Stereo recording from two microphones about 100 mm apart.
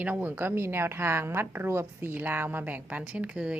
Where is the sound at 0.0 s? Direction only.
15° right (ahead or behind).